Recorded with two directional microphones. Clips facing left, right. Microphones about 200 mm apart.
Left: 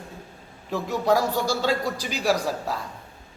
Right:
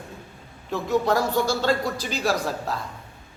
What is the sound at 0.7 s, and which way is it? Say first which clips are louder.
A man's voice: even; 10° left (ahead or behind).